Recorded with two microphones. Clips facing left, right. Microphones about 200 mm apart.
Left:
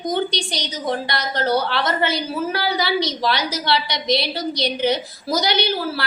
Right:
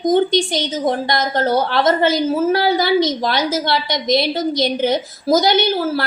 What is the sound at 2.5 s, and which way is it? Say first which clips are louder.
Speech: right 7 dB; 25° right (ahead or behind).